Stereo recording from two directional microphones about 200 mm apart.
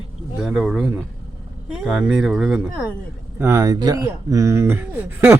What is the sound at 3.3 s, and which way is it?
Speech, 15° right (ahead or behind).